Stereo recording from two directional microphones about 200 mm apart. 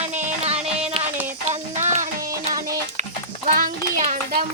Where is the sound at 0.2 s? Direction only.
30° right (ahead or behind).